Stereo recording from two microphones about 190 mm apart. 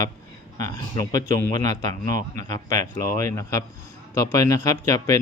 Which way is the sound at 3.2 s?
15° left (ahead or behind).